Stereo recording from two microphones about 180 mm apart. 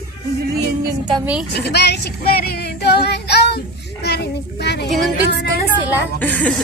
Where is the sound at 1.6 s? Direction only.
65° left (ahead or behind).